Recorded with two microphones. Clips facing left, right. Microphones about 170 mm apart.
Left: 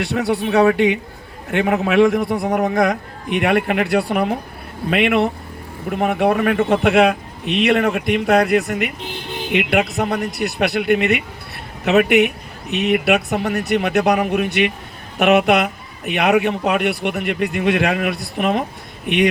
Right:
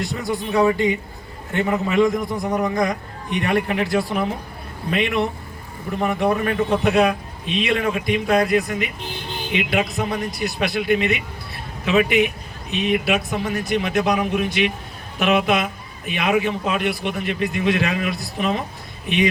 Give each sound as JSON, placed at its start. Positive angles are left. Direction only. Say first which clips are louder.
{"t": 0.0, "sound": "a man's voice", "louder": "left 5 dB", "side_deg": 75}
{"t": 9.5, "sound": "a man's voice", "louder": "left 4 dB", "side_deg": 60}